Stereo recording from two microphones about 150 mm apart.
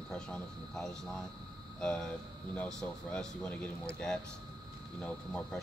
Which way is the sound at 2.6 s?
5° left (ahead or behind).